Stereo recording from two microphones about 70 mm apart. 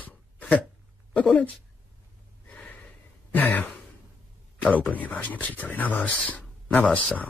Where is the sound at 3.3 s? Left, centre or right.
Left.